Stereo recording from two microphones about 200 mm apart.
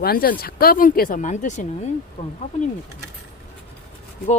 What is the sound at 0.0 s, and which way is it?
Speech, 50° left (ahead or behind).